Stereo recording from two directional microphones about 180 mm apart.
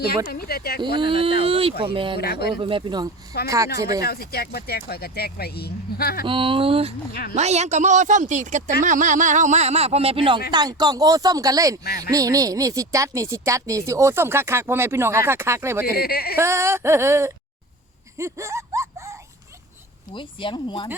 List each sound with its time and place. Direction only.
0.0 s speech: 60° left (ahead or behind)
0.9 s speech: 30° right (ahead or behind)
2.1 s speech: 60° left (ahead or behind)
2.6 s speech: 30° right (ahead or behind)
3.3 s speech: 60° left (ahead or behind)
6.2 s speech: 30° right (ahead or behind)
7.1 s speech: 60° left (ahead or behind)
7.3 s speech: 40° right (ahead or behind); by 15.9 s 15° right (ahead or behind)
15.9 s speech: 60° left (ahead or behind)
16.4 s speech: 15° right (ahead or behind)
20.1 s speech: 25° left (ahead or behind)